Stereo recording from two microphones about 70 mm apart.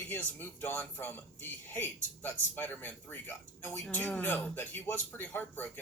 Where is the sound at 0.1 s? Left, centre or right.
Left.